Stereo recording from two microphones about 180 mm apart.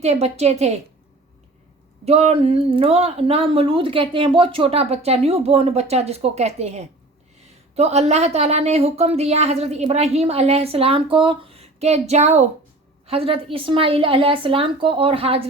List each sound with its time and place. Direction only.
0.0 s a woman's voice: 35° right (ahead or behind)
2.0 s a woman's voice: 35° right (ahead or behind)